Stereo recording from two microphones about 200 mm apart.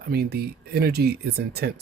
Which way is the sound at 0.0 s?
50° right (ahead or behind).